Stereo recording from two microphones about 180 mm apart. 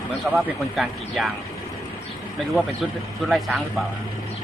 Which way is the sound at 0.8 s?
Centre (ahead or behind).